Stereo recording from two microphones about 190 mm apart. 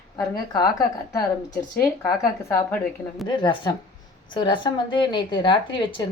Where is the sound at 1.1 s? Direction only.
10° left (ahead or behind); by 6.0 s 25° left (ahead or behind).